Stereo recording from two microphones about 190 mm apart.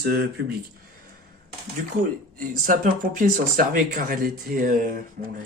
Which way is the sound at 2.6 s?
45° right (ahead or behind).